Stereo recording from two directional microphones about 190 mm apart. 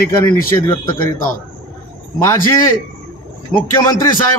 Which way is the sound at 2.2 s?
15° left (ahead or behind).